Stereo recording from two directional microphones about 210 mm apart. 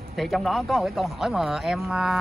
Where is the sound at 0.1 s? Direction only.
Centre (ahead or behind).